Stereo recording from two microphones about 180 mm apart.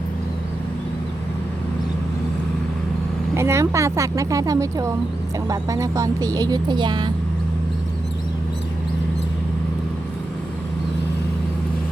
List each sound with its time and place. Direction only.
3.3 s speech: 15° right (ahead or behind)